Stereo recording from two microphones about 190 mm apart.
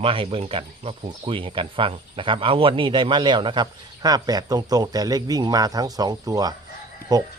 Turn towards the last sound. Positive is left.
turn(degrees=-20)  # may be behind; listen again after turning